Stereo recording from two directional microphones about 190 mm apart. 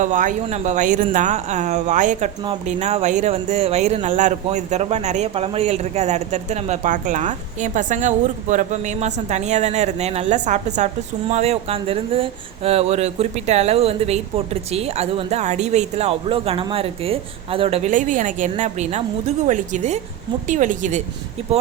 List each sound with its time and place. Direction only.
0.0 s speech: 40° right (ahead or behind)